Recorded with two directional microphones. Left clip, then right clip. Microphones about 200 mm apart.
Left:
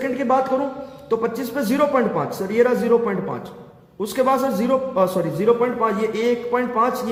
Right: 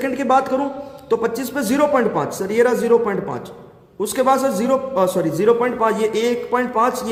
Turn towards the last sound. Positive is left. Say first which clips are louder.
# right 2 dB
turn(degrees=-20)  # may be behind; listen again after turning